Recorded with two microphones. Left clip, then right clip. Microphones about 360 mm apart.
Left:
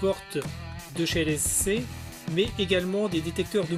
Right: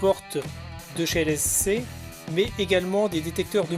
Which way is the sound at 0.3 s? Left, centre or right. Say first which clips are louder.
Right 2 dB; centre.